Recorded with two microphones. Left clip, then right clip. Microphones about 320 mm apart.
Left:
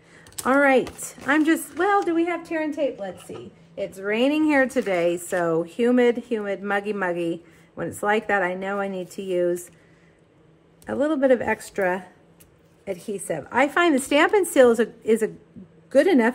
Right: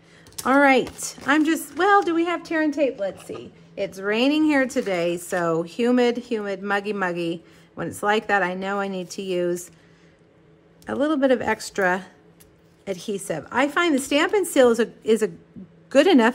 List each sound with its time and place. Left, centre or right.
0.4 s a woman's voice: centre; by 3.9 s right
3.9 s a woman's voice: centre
10.9 s a woman's voice: centre